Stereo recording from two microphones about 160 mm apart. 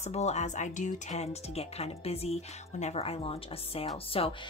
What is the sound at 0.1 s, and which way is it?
Speech, 45° left (ahead or behind).